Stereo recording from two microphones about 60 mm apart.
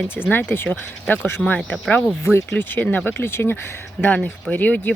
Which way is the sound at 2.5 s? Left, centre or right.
Left.